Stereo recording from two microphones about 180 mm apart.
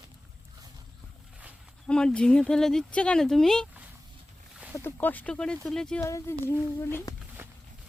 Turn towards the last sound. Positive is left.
turn(degrees=-15)  # may be behind; listen again after turning